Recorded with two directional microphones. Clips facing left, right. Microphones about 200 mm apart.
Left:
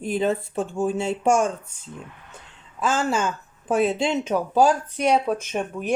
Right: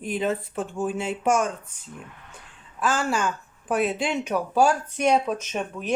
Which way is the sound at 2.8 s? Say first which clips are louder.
Left 2 dB; 20° left (ahead or behind).